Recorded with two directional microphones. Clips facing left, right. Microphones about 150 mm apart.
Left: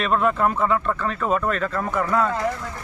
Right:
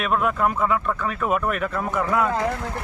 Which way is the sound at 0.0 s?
5° right (ahead or behind).